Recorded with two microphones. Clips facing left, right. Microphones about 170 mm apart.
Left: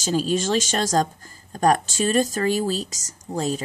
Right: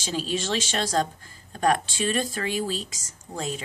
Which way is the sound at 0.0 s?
45° left (ahead or behind).